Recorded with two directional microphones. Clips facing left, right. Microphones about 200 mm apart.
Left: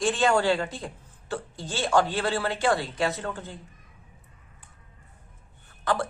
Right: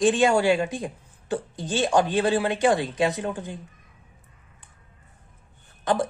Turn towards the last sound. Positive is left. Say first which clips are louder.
# right 3 dB
turn(degrees=-20)  # may be behind; listen again after turning